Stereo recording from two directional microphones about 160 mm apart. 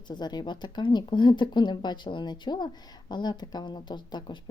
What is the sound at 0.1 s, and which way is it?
A woman's voice, 25° left (ahead or behind).